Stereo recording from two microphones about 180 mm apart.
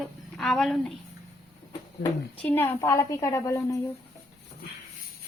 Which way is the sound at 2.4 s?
10° left (ahead or behind).